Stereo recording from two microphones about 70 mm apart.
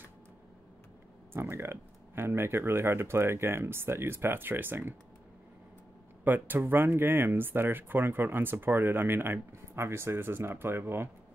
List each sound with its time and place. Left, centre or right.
1.3 s speech: right
6.2 s speech: right